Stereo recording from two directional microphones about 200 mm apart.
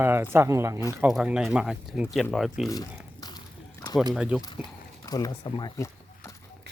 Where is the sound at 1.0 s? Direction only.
5° right (ahead or behind).